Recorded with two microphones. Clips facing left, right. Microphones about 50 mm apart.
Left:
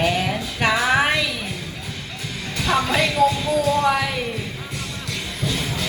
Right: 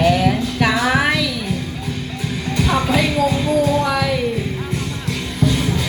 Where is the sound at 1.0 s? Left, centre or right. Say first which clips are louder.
Right 2 dB; left.